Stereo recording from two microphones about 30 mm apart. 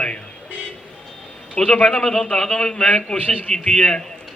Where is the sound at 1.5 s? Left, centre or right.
Left.